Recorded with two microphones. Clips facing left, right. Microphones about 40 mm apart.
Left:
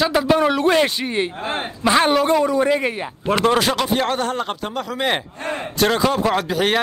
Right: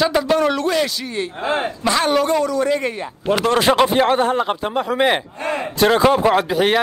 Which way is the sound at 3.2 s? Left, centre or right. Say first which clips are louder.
Even; left.